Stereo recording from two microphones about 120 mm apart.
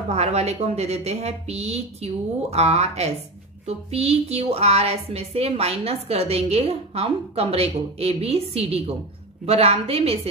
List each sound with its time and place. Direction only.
0.1 s a woman's voice: 60° right (ahead or behind)